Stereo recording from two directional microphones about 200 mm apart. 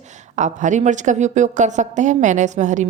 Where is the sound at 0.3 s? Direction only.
35° right (ahead or behind).